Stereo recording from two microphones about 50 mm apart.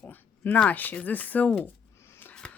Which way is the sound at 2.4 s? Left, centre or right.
Left.